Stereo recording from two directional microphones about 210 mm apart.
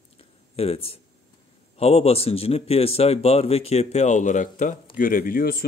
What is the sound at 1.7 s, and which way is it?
A man's voice, 30° left (ahead or behind).